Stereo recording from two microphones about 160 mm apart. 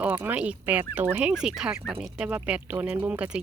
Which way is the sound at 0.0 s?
10° right (ahead or behind).